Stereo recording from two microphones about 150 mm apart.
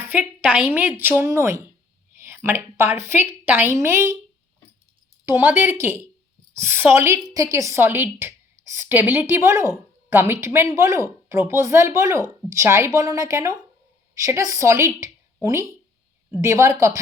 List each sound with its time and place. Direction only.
0.0 s a sound: 15° right (ahead or behind)
0.7 s a woman's voice: 15° right (ahead or behind)
5.2 s a woman's voice: 15° right (ahead or behind)